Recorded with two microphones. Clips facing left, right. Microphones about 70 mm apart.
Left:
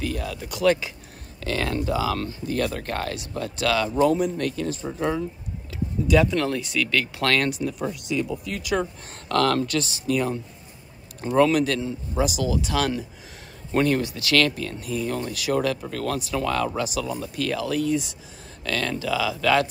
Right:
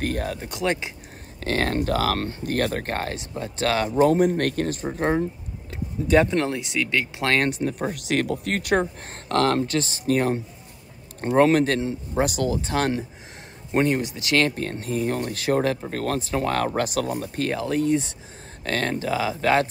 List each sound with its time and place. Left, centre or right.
0.0 s speech: right
0.6 s speech: right
1.4 s speech: right
4.0 s speech: right
7.9 s speech: right
12.2 s speech: right
13.7 s speech: right
14.5 s speech: right
17.5 s speech: right